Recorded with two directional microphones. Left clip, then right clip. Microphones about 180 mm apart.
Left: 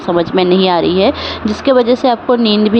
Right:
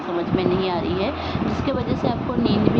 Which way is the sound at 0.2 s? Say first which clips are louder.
Left 10 dB; 65° left (ahead or behind).